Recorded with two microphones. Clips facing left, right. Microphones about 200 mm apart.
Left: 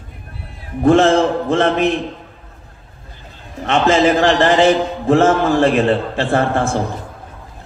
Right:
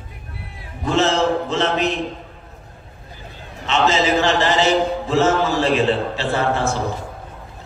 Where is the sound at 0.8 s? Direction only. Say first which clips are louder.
Left 6 dB; 55° left (ahead or behind).